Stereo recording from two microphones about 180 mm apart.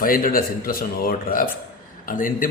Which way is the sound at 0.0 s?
50° left (ahead or behind).